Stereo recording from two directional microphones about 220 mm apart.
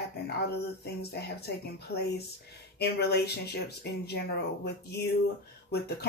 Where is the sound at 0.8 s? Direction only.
45° left (ahead or behind).